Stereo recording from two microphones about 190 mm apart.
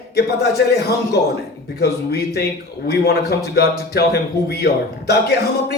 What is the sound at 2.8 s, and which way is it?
A man's voice, 55° left (ahead or behind).